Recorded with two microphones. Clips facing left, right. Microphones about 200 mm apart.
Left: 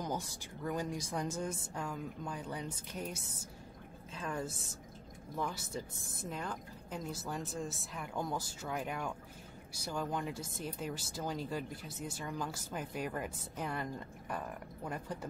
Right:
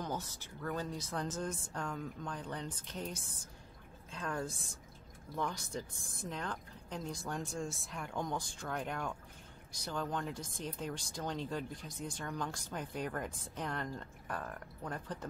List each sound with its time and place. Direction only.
0.0 s speech: 10° left (ahead or behind)